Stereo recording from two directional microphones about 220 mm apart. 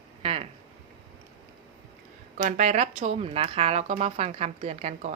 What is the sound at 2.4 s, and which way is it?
Speech, 35° right (ahead or behind).